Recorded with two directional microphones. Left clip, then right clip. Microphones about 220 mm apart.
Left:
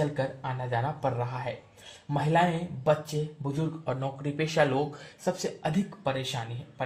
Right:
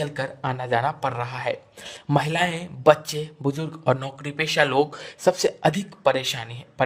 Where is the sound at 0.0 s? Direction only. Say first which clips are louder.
Right 3 dB; 55° right (ahead or behind).